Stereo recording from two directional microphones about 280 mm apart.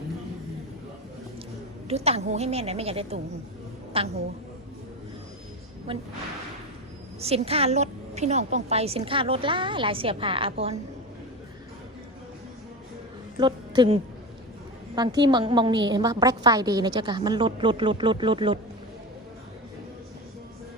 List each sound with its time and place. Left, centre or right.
1.9 s a woman's voice: right
5.9 s a woman's voice: centre
7.2 s a woman's voice: right
13.4 s a woman's voice: centre